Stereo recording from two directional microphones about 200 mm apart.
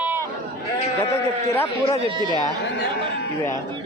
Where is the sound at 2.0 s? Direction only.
25° right (ahead or behind).